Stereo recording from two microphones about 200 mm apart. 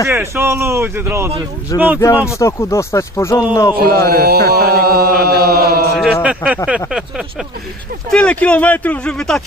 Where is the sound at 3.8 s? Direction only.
50° right (ahead or behind).